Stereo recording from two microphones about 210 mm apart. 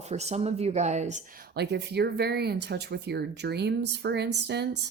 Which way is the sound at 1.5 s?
55° right (ahead or behind).